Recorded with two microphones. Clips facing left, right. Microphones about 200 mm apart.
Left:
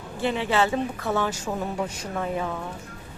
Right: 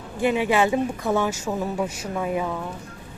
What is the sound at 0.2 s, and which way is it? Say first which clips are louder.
Speech: right 3 dB; 15° right (ahead or behind).